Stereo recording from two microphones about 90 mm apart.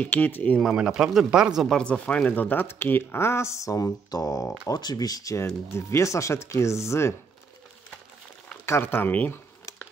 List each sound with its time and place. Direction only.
0.0 s speech: 20° left (ahead or behind)
0.6 s speech: 5° right (ahead or behind)
1.8 s speech: 10° left (ahead or behind); by 7.2 s 30° left (ahead or behind)
8.6 s speech: 25° left (ahead or behind)